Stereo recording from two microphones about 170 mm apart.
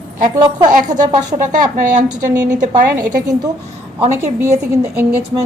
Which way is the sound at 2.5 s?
50° right (ahead or behind).